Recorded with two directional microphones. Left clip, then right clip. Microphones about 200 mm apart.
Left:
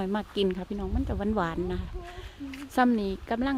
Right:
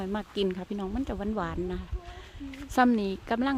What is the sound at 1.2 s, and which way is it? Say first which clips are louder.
Speech: left 6 dB; 5° left (ahead or behind).